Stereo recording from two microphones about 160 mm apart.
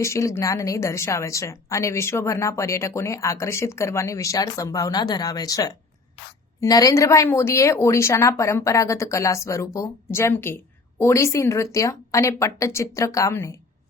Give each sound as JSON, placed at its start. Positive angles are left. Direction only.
{"t": 0.0, "sound": "a woman's voice", "side_deg": 20}